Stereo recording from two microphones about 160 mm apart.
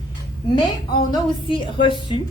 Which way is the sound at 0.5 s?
30° left (ahead or behind).